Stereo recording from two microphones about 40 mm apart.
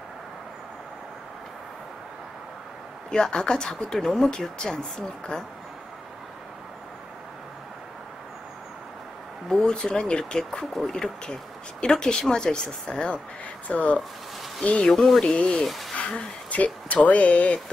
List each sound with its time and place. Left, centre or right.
3.1 s speech: centre
9.5 s speech: centre
13.7 s speech: left
15.0 s speech: centre
15.3 s speech: left
15.6 s speech: centre
16.0 s speech: left